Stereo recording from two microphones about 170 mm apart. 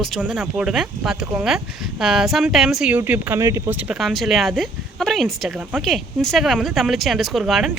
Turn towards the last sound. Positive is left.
turn(degrees=0)  # may be behind; listen again after turning